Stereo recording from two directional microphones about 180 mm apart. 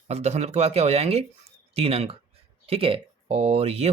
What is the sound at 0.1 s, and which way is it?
Speech, 35° right (ahead or behind).